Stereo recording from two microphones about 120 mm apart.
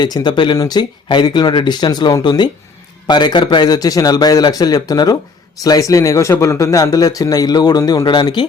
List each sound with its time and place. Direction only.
0.0 s speech: 35° left (ahead or behind)